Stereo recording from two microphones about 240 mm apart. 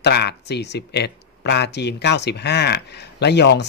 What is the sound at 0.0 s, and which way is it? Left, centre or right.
Speech, left.